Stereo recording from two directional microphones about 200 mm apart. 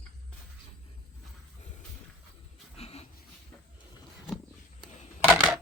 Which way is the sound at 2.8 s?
30° left (ahead or behind).